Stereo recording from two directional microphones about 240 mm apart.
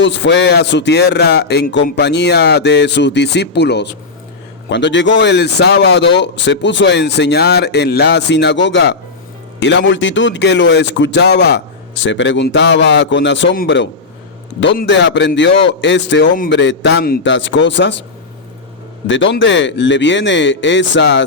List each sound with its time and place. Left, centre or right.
0.0 s a man's voice: left
19.0 s a man's voice: left